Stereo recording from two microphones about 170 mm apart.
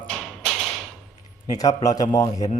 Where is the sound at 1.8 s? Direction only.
20° left (ahead or behind).